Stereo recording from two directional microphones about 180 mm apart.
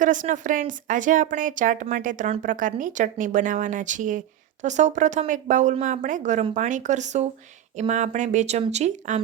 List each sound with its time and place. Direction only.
0.0 s speech: 45° right (ahead or behind)